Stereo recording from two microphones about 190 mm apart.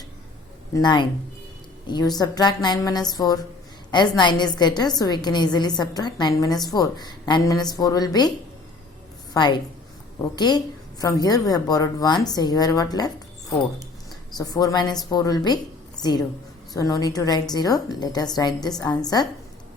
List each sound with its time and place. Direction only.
0.7 s a woman's voice: 20° left (ahead or behind)
9.3 s a woman's voice: 20° left (ahead or behind)
14.3 s a woman's voice: 20° left (ahead or behind)